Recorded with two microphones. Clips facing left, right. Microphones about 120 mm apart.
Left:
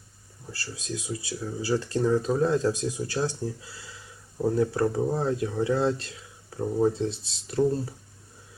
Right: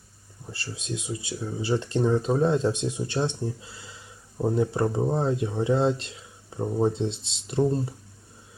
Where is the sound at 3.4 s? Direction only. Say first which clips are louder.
Right 1 dB; 25° right (ahead or behind).